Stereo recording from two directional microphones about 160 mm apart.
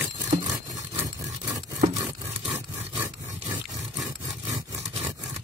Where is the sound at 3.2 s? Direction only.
50° right (ahead or behind).